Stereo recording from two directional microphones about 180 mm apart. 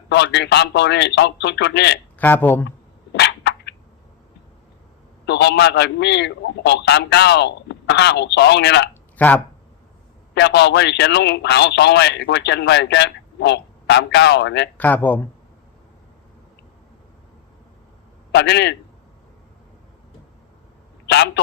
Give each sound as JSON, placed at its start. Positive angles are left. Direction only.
{"t": 0.1, "sound": "speech", "side_deg": 75}
{"t": 2.1, "sound": "speech", "side_deg": 10}
{"t": 2.6, "sound": "a sound", "side_deg": 70}
{"t": 5.2, "sound": "speech", "side_deg": 70}
{"t": 8.9, "sound": "a sound", "side_deg": 10}
{"t": 10.3, "sound": "speech", "side_deg": 70}
{"t": 14.8, "sound": "speech", "side_deg": 10}
{"t": 18.3, "sound": "speech", "side_deg": 70}
{"t": 21.1, "sound": "speech", "side_deg": 70}